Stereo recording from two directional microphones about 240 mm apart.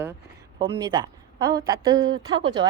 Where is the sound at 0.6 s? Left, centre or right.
Centre.